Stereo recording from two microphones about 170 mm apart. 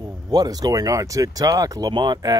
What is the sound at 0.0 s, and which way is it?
Speech, 25° right (ahead or behind).